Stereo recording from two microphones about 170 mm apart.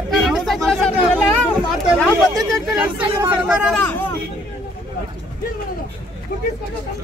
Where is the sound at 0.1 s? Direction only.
Centre (ahead or behind).